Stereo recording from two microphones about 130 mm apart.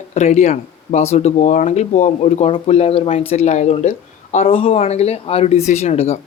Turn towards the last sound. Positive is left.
turn(degrees=55)  # may be behind; listen again after turning